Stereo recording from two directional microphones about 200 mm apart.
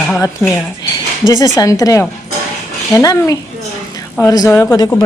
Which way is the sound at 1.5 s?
15° left (ahead or behind).